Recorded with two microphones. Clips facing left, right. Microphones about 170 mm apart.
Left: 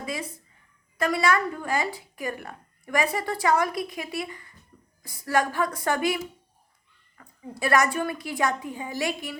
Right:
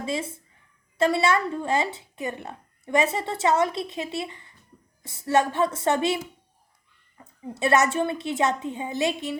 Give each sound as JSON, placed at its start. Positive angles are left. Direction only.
{"t": 0.0, "sound": "a woman's voice", "side_deg": -25}
{"t": 7.2, "sound": "a woman's voice", "side_deg": -25}